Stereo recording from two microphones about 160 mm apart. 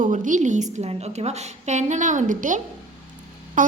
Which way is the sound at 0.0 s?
50° right (ahead or behind).